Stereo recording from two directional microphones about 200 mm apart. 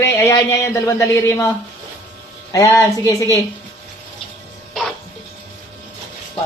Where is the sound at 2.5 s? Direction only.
15° left (ahead or behind).